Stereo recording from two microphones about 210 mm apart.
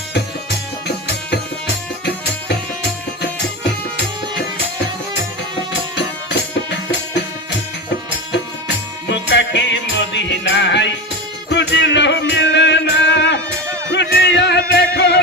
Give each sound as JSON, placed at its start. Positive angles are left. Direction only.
{"t": 0.9, "sound": "music", "side_deg": 55}
{"t": 6.0, "sound": "music", "side_deg": 55}
{"t": 8.3, "sound": "music", "side_deg": 55}